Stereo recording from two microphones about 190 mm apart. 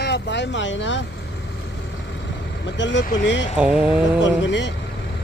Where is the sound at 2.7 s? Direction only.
70° left (ahead or behind).